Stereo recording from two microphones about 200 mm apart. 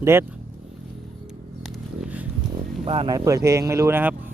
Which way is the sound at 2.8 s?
30° right (ahead or behind).